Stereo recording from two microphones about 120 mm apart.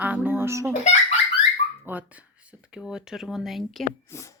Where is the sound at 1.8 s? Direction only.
15° right (ahead or behind).